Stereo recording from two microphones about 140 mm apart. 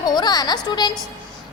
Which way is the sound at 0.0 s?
30° left (ahead or behind).